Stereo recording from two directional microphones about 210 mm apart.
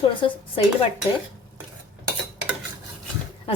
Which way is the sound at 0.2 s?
25° left (ahead or behind).